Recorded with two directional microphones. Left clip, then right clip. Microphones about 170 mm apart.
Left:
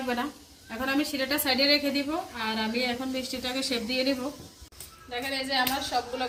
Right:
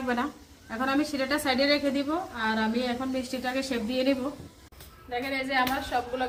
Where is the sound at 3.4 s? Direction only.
10° right (ahead or behind).